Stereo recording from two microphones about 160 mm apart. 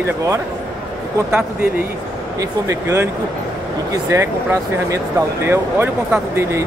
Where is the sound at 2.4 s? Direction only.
20° right (ahead or behind).